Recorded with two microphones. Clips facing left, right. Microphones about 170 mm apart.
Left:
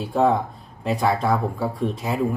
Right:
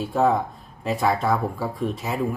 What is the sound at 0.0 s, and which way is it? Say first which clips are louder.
Speech: left 1 dB; centre (ahead or behind).